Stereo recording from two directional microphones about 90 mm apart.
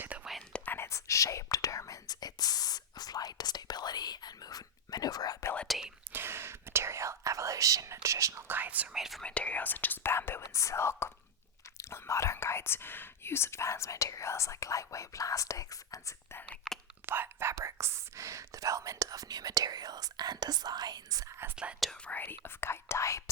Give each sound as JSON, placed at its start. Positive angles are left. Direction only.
{"t": 0.5, "sound": "whispering", "side_deg": 20}
{"t": 5.6, "sound": "whispering", "side_deg": 0}
{"t": 6.1, "sound": "whispering", "side_deg": -25}
{"t": 9.0, "sound": "speech", "side_deg": 0}
{"t": 9.2, "sound": "speech", "side_deg": 15}
{"t": 16.3, "sound": "whispering", "side_deg": 20}
{"t": 17.1, "sound": "whispering", "side_deg": -25}
{"t": 21.5, "sound": "speech", "side_deg": -10}
{"t": 22.0, "sound": "speech", "side_deg": 20}